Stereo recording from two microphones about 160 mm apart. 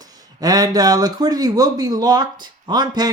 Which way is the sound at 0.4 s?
25° right (ahead or behind).